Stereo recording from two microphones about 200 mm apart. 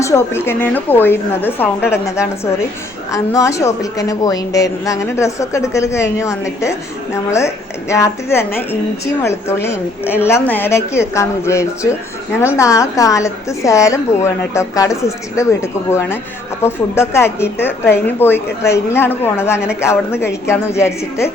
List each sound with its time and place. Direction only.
0.0 s a woman's voice: 15° left (ahead or behind)